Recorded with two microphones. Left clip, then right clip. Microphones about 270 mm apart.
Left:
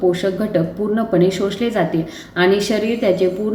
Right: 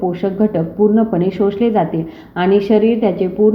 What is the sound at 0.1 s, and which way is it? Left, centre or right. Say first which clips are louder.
A woman's voice: right 1 dB; centre.